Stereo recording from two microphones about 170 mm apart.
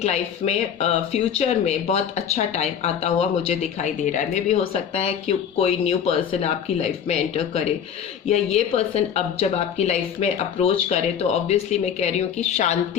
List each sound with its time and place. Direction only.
0.0 s speech: 40° left (ahead or behind)